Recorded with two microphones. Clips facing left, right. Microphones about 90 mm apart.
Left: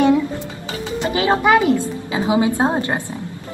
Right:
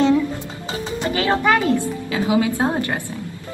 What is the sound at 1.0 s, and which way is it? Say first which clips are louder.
A woman's voice: left 2 dB; 20° left (ahead or behind).